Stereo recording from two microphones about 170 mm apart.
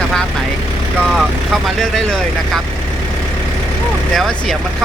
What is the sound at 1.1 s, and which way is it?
Speech, centre (ahead or behind).